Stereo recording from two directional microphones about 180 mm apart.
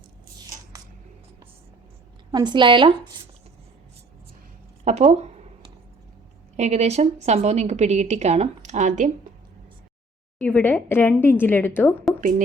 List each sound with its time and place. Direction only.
2.3 s a woman's voice: 25° right (ahead or behind)
4.9 s a sound: 40° right (ahead or behind)
6.6 s a woman's voice: 40° right (ahead or behind)
10.3 s a woman's voice: 10° left (ahead or behind)